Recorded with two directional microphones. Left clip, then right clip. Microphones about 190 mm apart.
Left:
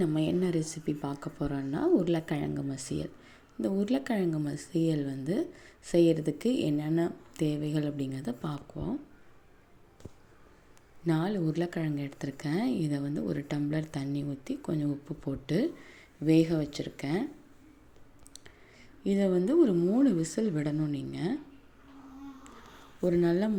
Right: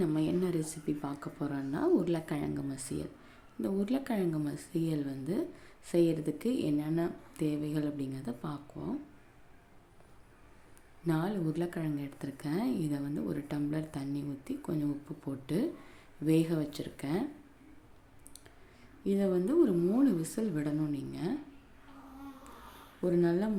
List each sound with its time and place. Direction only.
0.0 s speech: 15° left (ahead or behind)
11.0 s speech: 15° left (ahead or behind)
19.0 s speech: 15° left (ahead or behind)
23.0 s speech: 15° left (ahead or behind)